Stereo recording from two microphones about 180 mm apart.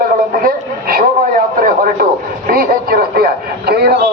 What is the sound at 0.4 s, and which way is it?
Radio, 55° right (ahead or behind).